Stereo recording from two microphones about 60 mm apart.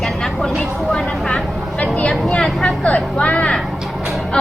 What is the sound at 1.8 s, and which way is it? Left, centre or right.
Vehicle, centre.